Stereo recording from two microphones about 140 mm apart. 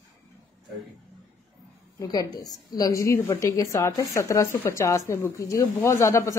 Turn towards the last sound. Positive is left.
turn(degrees=20)  # may be behind; listen again after turning